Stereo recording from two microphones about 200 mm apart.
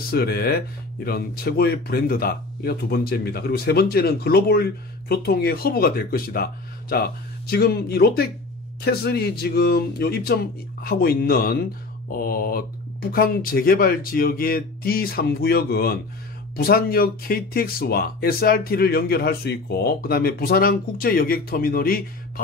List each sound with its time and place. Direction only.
0.1 s speech: 50° left (ahead or behind)